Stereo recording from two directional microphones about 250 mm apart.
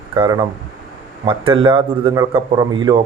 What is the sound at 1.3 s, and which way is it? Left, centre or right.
Speech, right.